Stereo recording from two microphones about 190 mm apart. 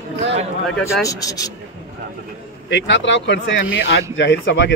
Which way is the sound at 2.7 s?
75° left (ahead or behind).